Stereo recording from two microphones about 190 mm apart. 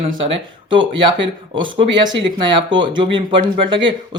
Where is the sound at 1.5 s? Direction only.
25° right (ahead or behind).